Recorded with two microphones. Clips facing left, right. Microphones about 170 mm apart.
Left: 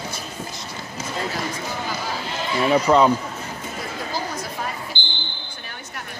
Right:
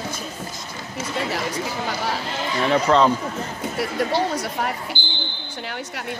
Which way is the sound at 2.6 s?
10° left (ahead or behind).